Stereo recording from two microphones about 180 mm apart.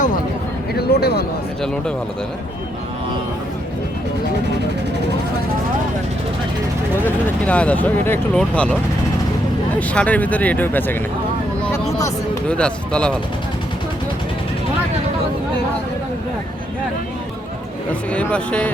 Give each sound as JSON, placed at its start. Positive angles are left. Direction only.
{"t": 0.7, "sound": "a sound", "side_deg": 60}
{"t": 7.4, "sound": "speech", "side_deg": 10}
{"t": 9.9, "sound": "speech", "side_deg": 5}
{"t": 11.6, "sound": "vehicle", "side_deg": 5}
{"t": 11.9, "sound": "speech", "side_deg": 15}
{"t": 12.5, "sound": "speech", "side_deg": 5}
{"t": 18.1, "sound": "speech", "side_deg": 5}